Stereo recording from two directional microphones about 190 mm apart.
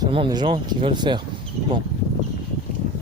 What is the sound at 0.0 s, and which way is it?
Speech, 25° right (ahead or behind).